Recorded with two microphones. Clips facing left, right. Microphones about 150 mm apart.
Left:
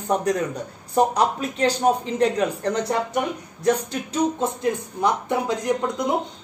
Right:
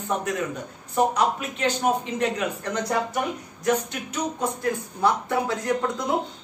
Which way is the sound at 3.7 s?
25° left (ahead or behind).